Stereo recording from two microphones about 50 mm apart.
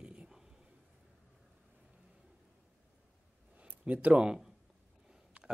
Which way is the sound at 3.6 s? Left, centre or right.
Right.